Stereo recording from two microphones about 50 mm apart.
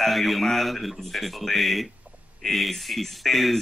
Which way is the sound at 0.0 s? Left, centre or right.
Centre.